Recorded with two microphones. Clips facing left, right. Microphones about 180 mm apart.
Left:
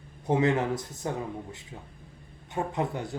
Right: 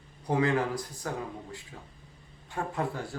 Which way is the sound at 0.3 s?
25° left (ahead or behind).